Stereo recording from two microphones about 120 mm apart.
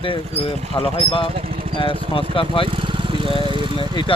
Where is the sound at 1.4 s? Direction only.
50° right (ahead or behind).